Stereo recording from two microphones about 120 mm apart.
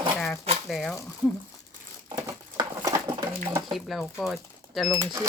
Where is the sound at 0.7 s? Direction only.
Centre (ahead or behind).